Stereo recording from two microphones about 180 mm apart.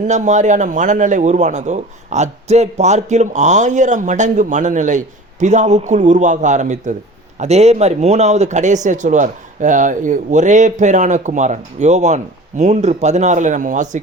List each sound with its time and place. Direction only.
0.1 s a man's voice: 40° right (ahead or behind)